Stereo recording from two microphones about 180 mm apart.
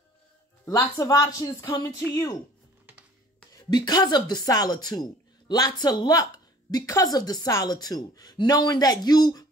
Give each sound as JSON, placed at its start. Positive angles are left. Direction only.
{"t": 0.7, "sound": "speech", "side_deg": 20}
{"t": 3.7, "sound": "speech", "side_deg": 20}